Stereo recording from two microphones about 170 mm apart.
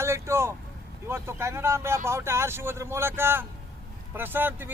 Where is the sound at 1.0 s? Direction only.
15° right (ahead or behind).